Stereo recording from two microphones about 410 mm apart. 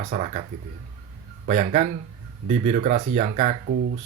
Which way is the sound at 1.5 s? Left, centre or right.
Centre.